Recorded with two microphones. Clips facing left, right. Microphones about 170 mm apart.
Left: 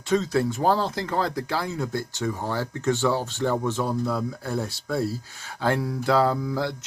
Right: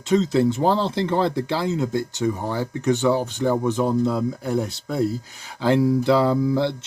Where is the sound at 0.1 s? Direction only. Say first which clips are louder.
Right 4 dB; 20° right (ahead or behind).